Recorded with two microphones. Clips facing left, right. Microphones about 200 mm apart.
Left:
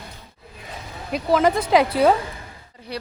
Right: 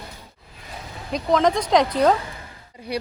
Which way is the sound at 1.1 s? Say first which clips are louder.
Left 1 dB; 5° left (ahead or behind).